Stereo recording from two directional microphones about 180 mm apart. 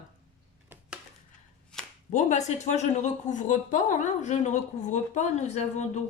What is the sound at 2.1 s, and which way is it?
Speech, 40° left (ahead or behind).